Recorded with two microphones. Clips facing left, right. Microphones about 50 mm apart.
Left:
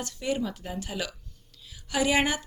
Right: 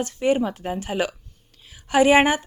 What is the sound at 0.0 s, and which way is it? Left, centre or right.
A woman's voice, right.